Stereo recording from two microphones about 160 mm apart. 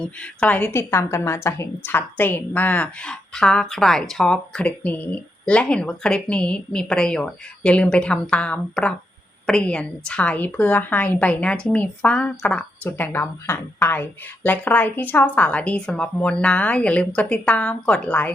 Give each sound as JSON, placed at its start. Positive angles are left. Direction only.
{"t": 0.0, "sound": "a woman's voice", "side_deg": 5}